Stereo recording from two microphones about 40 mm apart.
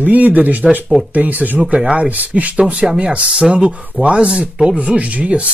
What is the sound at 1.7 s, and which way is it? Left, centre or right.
Speech, right.